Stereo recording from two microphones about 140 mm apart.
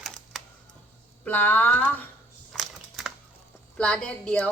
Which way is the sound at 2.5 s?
Centre (ahead or behind).